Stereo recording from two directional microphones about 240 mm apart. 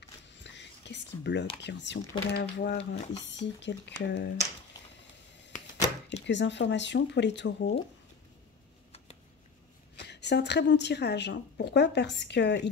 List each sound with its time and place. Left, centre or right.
0.3 s whispering: left
1.6 s a woman's voice: left
6.2 s a woman's voice: left
9.9 s a woman's voice: left